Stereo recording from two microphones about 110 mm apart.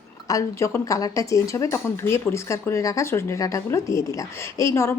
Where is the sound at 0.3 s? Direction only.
30° left (ahead or behind).